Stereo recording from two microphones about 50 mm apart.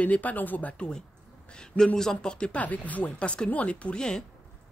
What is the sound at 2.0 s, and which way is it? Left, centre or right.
Speech, centre.